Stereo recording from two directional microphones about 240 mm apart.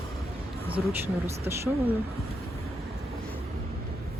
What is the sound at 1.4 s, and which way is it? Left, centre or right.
Speech, centre.